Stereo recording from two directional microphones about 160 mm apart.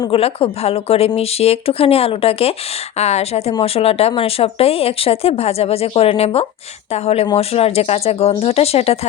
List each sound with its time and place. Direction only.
0.0 s a woman's voice: 35° left (ahead or behind)